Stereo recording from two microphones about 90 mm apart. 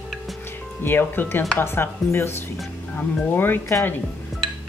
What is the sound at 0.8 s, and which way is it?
Speech, 25° left (ahead or behind).